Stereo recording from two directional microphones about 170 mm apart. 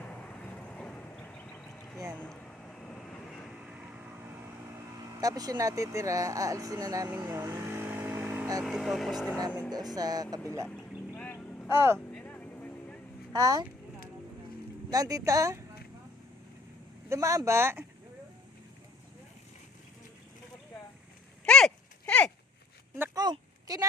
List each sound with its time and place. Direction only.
0.0 s vehicle: 5° left (ahead or behind)
5.2 s speech: 20° right (ahead or behind)
7.3 s vehicle: 15° right (ahead or behind)
8.6 s speech: centre (ahead or behind)
9.6 s speech: 25° right (ahead or behind)
10.7 s a sound: 10° left (ahead or behind)
11.7 s speech: 15° right (ahead or behind)
11.9 s vehicle: 5° left (ahead or behind)
13.3 s speech: 20° right (ahead or behind)
14.8 s speech: 20° right (ahead or behind)
17.1 s speech: 20° right (ahead or behind)
21.4 s a sound: 5° left (ahead or behind)
23.0 s a sound: 25° right (ahead or behind)